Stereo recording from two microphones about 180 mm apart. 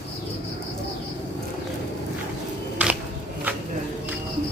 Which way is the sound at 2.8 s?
10° right (ahead or behind).